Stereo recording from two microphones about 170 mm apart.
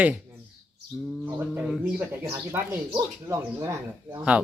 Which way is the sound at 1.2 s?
10° right (ahead or behind).